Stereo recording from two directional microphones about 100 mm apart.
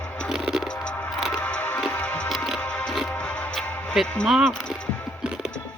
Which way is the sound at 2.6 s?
10° left (ahead or behind).